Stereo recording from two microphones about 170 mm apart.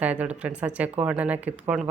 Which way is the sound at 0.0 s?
10° right (ahead or behind).